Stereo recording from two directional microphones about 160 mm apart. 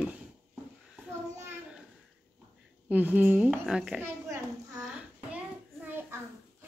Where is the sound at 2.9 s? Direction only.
10° right (ahead or behind).